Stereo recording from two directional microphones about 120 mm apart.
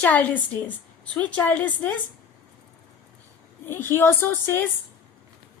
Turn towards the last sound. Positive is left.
turn(degrees=20)  # may be behind; listen again after turning